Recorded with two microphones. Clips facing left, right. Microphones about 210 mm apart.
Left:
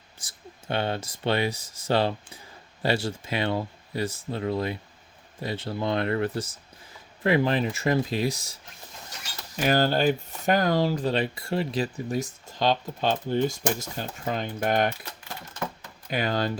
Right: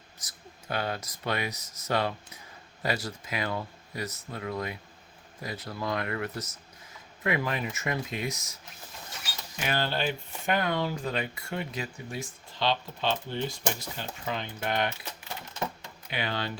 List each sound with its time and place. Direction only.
0.2 s speech: 30° left (ahead or behind)
9.6 s speech: 40° left (ahead or behind)
16.0 s speech: 40° left (ahead or behind)